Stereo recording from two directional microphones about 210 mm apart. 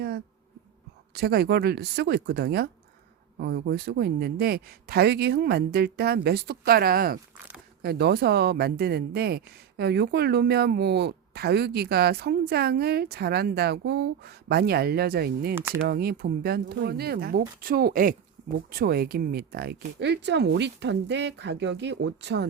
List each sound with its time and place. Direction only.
1.1 s speech: 50° right (ahead or behind)